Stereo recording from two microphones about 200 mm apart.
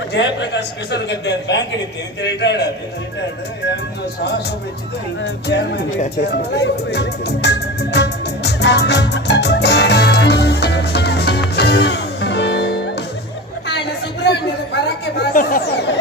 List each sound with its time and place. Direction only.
0.1 s a man's voice: 60° left (ahead or behind)
5.2 s a man's voice: 60° left (ahead or behind)
6.2 s music: 60° left (ahead or behind)
13.7 s chatter: 60° left (ahead or behind)